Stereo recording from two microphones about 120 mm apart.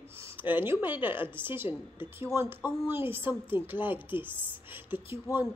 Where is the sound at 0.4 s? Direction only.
15° right (ahead or behind).